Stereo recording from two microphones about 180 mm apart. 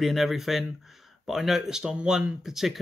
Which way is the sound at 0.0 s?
Centre (ahead or behind).